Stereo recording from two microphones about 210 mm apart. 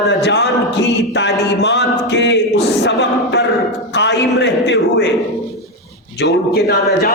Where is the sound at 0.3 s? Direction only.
55° left (ahead or behind).